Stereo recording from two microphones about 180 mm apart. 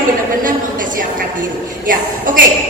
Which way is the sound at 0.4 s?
50° right (ahead or behind).